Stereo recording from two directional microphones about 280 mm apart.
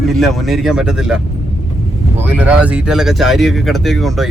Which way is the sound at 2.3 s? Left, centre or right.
Centre.